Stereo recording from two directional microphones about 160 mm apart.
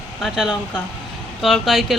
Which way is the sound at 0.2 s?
5° right (ahead or behind).